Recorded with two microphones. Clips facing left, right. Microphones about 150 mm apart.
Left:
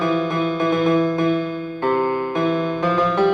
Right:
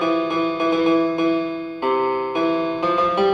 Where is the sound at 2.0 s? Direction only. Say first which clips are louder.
Even; 20° right (ahead or behind).